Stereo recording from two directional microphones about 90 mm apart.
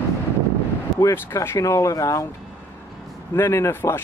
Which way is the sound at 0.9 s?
30° left (ahead or behind).